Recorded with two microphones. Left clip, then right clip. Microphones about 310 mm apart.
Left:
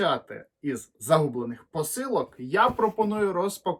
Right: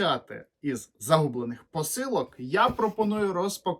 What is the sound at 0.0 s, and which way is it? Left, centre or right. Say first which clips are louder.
Speech: left 1 dB; centre.